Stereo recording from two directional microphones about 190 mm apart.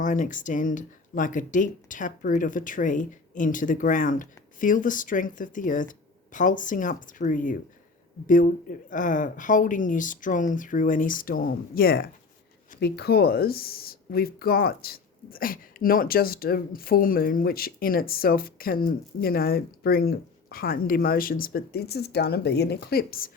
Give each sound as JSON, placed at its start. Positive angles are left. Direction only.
{"t": 0.0, "sound": "speech", "side_deg": 45}